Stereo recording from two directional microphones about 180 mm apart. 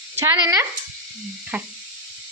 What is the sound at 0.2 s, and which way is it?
Speech, 15° right (ahead or behind).